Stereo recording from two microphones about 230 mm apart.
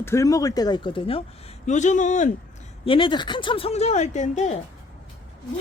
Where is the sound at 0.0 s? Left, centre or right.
Centre; by 2.3 s left.